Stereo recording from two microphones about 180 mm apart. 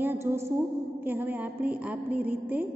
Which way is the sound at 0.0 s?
10° right (ahead or behind).